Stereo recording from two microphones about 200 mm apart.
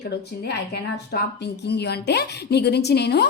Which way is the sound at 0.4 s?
55° left (ahead or behind).